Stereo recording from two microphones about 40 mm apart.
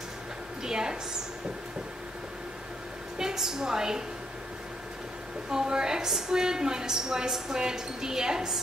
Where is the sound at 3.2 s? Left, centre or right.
Centre.